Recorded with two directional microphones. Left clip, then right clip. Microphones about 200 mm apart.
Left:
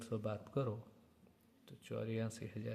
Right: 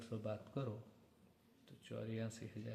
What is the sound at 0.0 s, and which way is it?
A man's voice, 30° left (ahead or behind).